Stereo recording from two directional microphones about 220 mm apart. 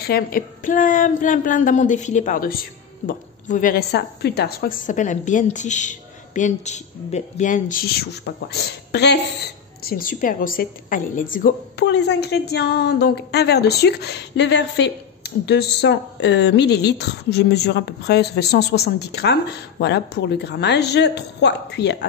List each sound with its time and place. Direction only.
0.0 s a woman's voice: 40° left (ahead or behind)
11.7 s a woman's voice: 50° left (ahead or behind)